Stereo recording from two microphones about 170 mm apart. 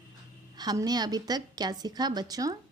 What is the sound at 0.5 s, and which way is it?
A woman's voice, 25° right (ahead or behind).